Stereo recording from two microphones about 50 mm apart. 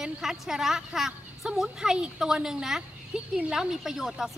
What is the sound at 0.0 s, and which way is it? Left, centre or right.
A woman's voice, centre.